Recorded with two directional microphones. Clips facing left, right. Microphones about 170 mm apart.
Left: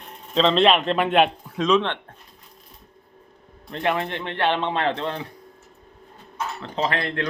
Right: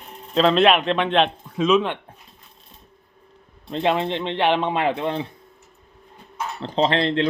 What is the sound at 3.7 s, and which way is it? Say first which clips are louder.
Speech: right 3 dB; 20° right (ahead or behind).